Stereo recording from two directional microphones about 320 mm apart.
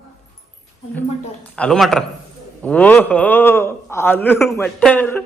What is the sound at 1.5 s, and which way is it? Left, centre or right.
A man's voice, centre.